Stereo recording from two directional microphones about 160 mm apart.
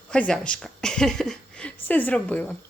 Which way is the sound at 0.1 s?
5° left (ahead or behind).